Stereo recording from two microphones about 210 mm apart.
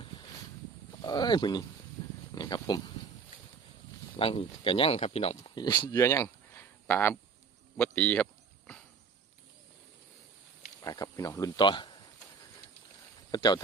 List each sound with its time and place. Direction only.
1.0 s speech: 20° left (ahead or behind)
4.2 s speech: 25° left (ahead or behind); by 7.2 s 10° left (ahead or behind)
7.8 s a sound: 10° left (ahead or behind)
10.8 s speech: 15° left (ahead or behind)
13.3 s speech: 20° left (ahead or behind)